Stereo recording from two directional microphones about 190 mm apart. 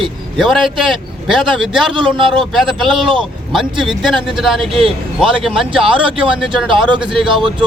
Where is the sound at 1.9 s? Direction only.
25° right (ahead or behind).